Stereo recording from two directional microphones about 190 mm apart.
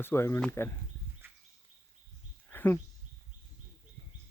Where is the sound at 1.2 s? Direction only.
10° right (ahead or behind).